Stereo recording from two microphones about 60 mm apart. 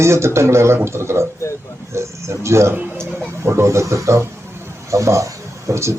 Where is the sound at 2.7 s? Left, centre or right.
Right.